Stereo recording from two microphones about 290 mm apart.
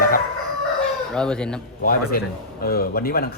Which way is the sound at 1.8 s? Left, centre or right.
Left.